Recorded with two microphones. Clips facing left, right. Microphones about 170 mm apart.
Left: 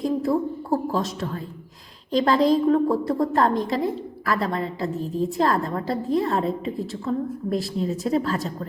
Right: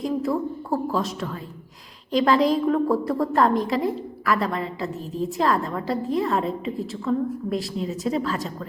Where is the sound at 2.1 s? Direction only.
40° left (ahead or behind).